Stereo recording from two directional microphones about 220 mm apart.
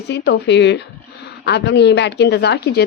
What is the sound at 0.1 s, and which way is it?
A woman's voice, 50° left (ahead or behind).